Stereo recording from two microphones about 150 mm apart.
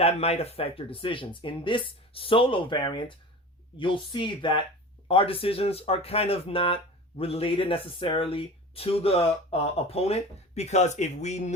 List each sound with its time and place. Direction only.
0.0 s speech: 45° left (ahead or behind)